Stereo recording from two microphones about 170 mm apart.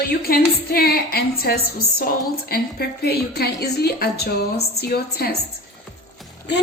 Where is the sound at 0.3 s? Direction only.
60° left (ahead or behind).